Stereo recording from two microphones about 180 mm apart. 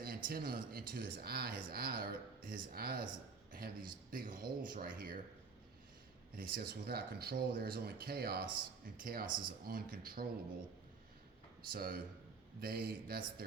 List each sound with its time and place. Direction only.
0.0 s a man's voice: 55° right (ahead or behind)
6.3 s speech: 55° right (ahead or behind)
11.7 s speech: 55° right (ahead or behind)